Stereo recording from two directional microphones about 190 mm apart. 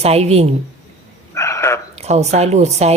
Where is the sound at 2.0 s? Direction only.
35° right (ahead or behind).